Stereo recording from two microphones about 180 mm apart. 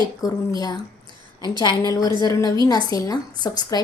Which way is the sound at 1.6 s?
20° left (ahead or behind).